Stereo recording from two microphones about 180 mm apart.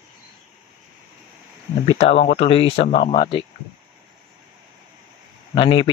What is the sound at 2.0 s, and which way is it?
Speech, 35° left (ahead or behind).